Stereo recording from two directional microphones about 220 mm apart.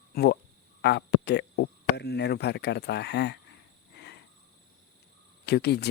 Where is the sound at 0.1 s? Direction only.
45° left (ahead or behind).